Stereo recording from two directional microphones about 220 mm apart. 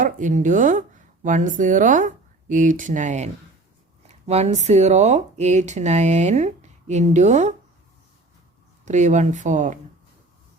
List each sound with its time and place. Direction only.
0.0 s speech: 35° right (ahead or behind)
8.8 s speech: 35° right (ahead or behind)